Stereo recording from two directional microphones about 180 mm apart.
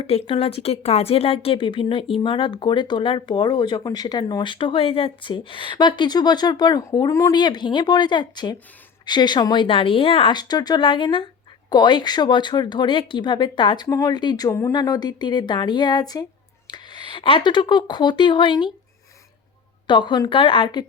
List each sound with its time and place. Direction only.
0.0 s speech: 30° left (ahead or behind)
19.9 s speech: 25° left (ahead or behind)